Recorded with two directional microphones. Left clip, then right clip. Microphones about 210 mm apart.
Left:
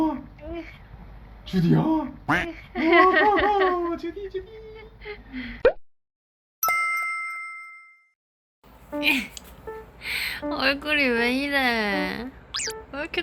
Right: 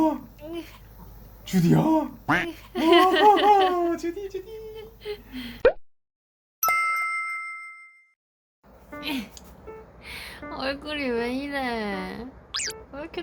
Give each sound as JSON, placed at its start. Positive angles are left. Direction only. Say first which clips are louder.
{"t": 0.3, "sound": "a sound", "louder": "even", "side_deg": -30}
{"t": 1.5, "sound": "speech", "louder": "right 1 dB", "side_deg": 0}
{"t": 2.5, "sound": "speech", "louder": "right 2 dB", "side_deg": -30}
{"t": 6.6, "sound": "ding", "louder": "even", "side_deg": 0}
{"t": 9.0, "sound": "a woman's voice", "louder": "left 9 dB", "side_deg": 10}